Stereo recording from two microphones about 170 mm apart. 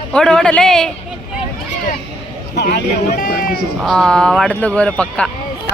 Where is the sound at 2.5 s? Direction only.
70° left (ahead or behind).